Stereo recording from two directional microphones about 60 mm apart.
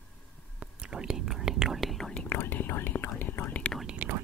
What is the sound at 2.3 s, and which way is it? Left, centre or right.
Speech, left.